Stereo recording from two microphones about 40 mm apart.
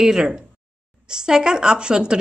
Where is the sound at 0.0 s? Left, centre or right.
Centre.